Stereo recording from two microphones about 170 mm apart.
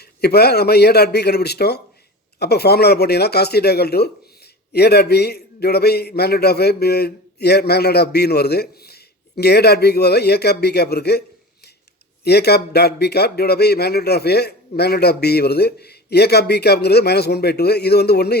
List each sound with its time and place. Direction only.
0.0 s a man's voice: 70° left (ahead or behind)
12.2 s a man's voice: 70° left (ahead or behind)